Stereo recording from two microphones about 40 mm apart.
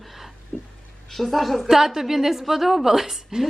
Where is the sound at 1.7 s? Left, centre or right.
Centre.